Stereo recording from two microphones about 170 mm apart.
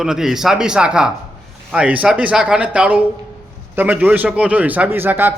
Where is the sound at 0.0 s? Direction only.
5° right (ahead or behind).